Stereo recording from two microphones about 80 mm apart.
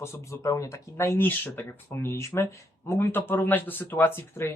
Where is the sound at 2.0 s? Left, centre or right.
Left.